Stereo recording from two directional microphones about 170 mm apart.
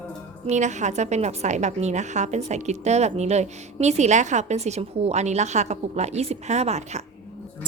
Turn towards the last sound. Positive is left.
turn(degrees=-40)  # may be behind; listen again after turning